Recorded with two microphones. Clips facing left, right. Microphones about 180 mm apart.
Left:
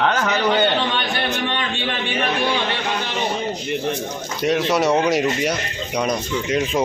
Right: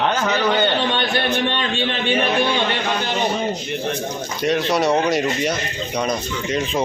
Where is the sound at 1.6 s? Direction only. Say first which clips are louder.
Right 2 dB; 30° right (ahead or behind).